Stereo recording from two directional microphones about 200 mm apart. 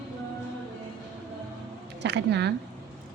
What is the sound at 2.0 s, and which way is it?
Speech, 60° right (ahead or behind).